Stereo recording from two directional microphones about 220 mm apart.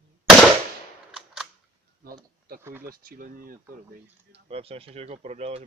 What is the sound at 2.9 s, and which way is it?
Speech, 40° right (ahead or behind).